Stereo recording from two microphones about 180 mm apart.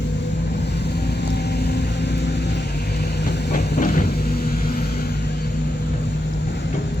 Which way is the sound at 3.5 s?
50° left (ahead or behind).